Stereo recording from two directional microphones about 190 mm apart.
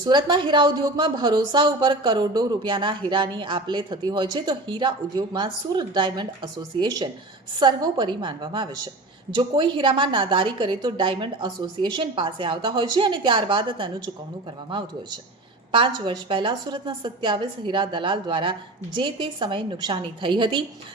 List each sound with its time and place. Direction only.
0.0 s a woman's voice: 25° right (ahead or behind)
15.7 s a woman's voice: 25° right (ahead or behind)